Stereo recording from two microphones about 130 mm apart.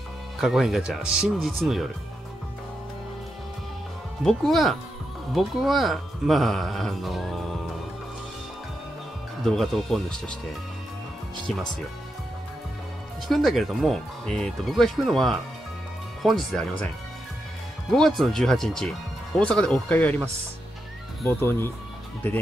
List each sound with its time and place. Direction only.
0.4 s speech: centre (ahead or behind)
4.2 s speech: centre (ahead or behind)
9.4 s speech: centre (ahead or behind)
13.3 s speech: centre (ahead or behind)
17.9 s speech: centre (ahead or behind)
21.3 s speech: 15° left (ahead or behind)